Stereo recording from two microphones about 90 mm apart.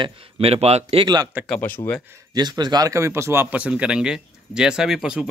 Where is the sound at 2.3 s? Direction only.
50° right (ahead or behind).